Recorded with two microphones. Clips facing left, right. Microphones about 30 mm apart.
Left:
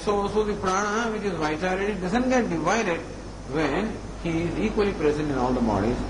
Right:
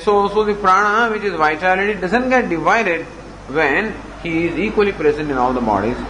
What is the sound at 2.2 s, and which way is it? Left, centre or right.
Speech, right.